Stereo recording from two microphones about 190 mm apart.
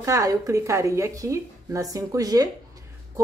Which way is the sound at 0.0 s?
15° right (ahead or behind).